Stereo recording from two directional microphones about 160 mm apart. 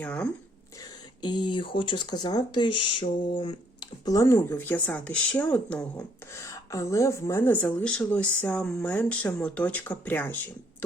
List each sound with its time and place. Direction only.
0.0 s speech: 10° left (ahead or behind)
1.2 s speech: 25° left (ahead or behind); by 5.8 s 10° left (ahead or behind)
6.3 s speech: 20° left (ahead or behind)